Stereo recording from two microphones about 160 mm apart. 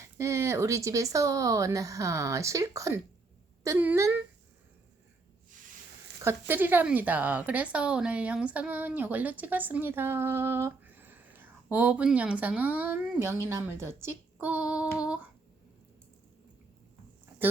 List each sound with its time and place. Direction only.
0.0 s a woman's voice: 20° right (ahead or behind)
6.2 s a woman's voice: 10° right (ahead or behind)